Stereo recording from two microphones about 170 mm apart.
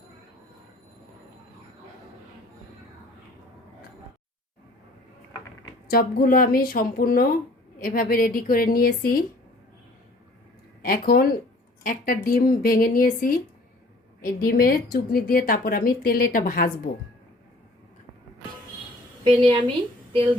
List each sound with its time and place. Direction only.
5.9 s a woman's voice: 60° left (ahead or behind)
10.8 s a woman's voice: 60° left (ahead or behind)
19.2 s a woman's voice: 30° right (ahead or behind)